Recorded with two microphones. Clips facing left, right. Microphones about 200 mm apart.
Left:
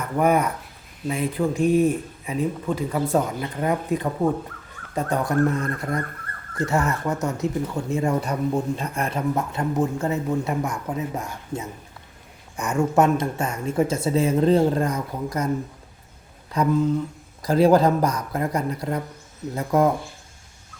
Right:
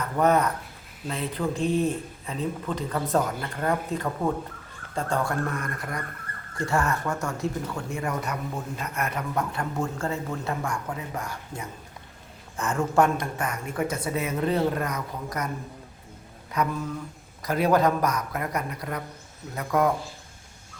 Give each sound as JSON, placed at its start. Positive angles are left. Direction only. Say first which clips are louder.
{"t": 0.0, "sound": "speech", "louder": "left 2 dB", "side_deg": 10}
{"t": 16.6, "sound": "speech", "louder": "left 8 dB", "side_deg": 30}